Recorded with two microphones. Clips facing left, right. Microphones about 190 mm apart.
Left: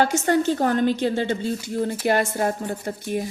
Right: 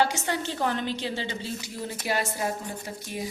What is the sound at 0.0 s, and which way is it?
A woman's voice, 45° left (ahead or behind).